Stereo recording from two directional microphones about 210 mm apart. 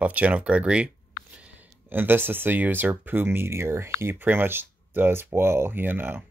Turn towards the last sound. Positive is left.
turn(degrees=-10)  # may be behind; listen again after turning